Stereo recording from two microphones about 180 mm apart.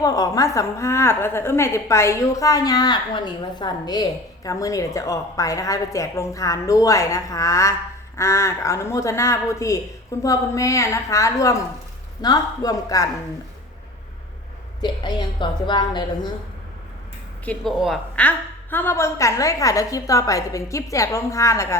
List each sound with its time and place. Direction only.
0.0 s a woman's voice: 20° left (ahead or behind)
14.8 s a woman's voice: 25° left (ahead or behind)
17.4 s a woman's voice: 5° left (ahead or behind)